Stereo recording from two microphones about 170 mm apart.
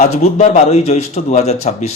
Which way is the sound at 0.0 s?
40° left (ahead or behind).